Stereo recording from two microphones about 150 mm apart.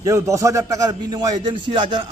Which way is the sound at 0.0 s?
20° right (ahead or behind).